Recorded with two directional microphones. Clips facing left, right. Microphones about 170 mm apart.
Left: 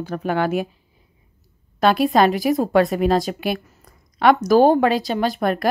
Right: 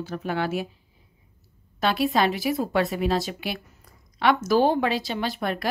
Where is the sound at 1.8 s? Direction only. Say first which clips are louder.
Left 6 dB; 45° left (ahead or behind).